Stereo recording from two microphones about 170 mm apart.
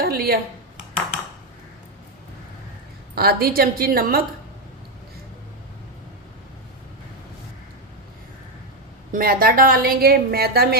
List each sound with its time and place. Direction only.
0.0 s a sound: 65° right (ahead or behind)
3.2 s a woman's voice: 65° right (ahead or behind)
9.1 s a woman's voice: 60° right (ahead or behind)